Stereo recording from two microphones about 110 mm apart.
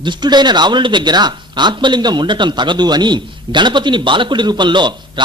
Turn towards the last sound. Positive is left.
turn(degrees=-45)  # may be behind; listen again after turning